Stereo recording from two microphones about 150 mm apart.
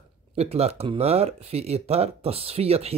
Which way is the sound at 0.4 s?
45° right (ahead or behind).